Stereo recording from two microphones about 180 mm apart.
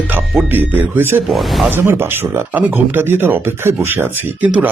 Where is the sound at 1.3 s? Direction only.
Centre (ahead or behind).